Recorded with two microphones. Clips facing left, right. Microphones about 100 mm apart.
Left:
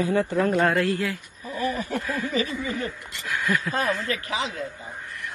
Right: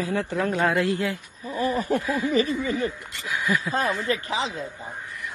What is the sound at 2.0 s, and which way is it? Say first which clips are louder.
Speech: right 3 dB; 15° right (ahead or behind).